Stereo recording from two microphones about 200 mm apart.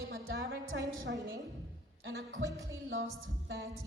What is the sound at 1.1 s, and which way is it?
Speech, 60° right (ahead or behind).